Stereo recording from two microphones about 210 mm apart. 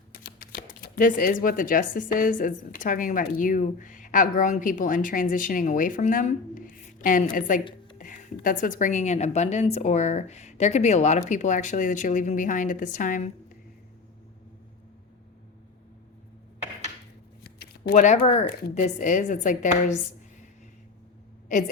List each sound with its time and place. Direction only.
0.1 s a woman's voice: 45° left (ahead or behind)
17.4 s a sound: 45° left (ahead or behind); by 18.4 s 30° left (ahead or behind)
18.7 s a woman's voice: 35° left (ahead or behind)